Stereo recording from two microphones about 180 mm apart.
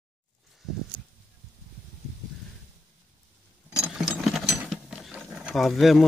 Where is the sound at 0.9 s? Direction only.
25° right (ahead or behind).